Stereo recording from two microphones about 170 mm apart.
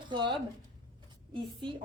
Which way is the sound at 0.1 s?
25° right (ahead or behind).